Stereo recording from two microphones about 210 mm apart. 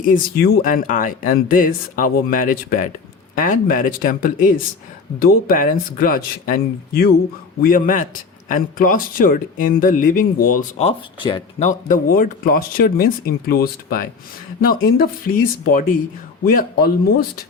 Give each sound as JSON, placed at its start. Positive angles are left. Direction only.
{"t": 0.0, "sound": "speech", "side_deg": 45}
{"t": 11.7, "sound": "speech", "side_deg": 40}